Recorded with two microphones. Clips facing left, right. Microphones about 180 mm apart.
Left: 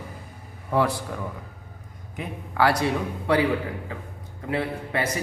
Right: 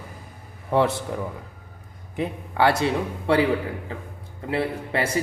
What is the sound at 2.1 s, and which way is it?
A man's voice, 25° right (ahead or behind).